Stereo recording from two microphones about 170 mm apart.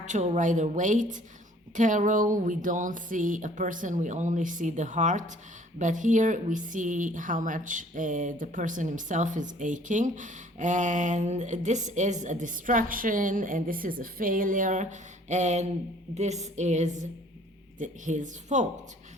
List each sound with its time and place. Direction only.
0.0 s a woman's voice: 45° right (ahead or behind)